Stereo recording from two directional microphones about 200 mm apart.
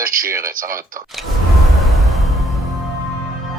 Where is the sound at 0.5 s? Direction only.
45° right (ahead or behind).